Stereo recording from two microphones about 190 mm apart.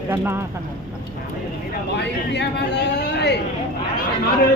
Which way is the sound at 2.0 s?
65° left (ahead or behind).